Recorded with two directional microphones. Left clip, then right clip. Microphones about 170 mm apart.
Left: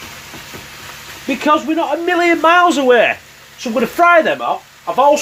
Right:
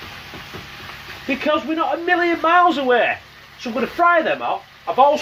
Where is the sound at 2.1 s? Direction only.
50° left (ahead or behind).